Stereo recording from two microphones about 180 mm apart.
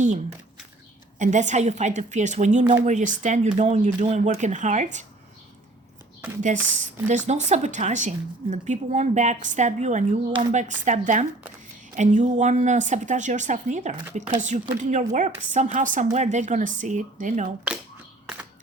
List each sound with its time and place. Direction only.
1.2 s a woman's voice: 45° right (ahead or behind)
6.4 s a woman's voice: 45° right (ahead or behind)